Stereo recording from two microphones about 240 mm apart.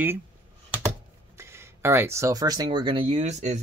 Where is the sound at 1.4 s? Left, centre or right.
Centre.